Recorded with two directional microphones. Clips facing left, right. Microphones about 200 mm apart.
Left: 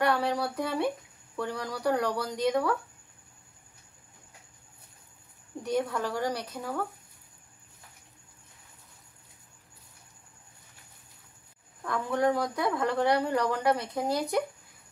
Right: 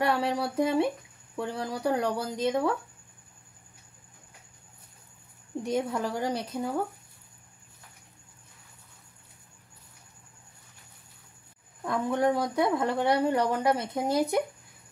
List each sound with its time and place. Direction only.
0.0 s speech: 25° right (ahead or behind)
5.6 s speech: 25° right (ahead or behind)
11.8 s speech: 25° right (ahead or behind)